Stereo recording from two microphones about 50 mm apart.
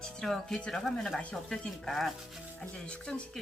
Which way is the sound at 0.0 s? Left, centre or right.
Centre.